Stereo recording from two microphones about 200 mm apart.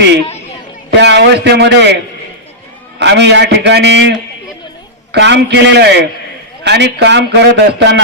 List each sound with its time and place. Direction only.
0.9 s a man's voice: 55° right (ahead or behind)
3.0 s a man's voice: 60° right (ahead or behind)
5.1 s a man's voice: 60° right (ahead or behind)